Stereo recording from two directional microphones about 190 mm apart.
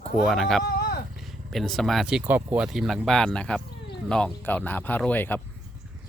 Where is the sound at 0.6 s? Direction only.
55° left (ahead or behind).